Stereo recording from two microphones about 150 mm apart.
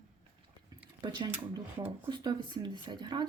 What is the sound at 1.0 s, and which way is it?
Speech, 30° right (ahead or behind).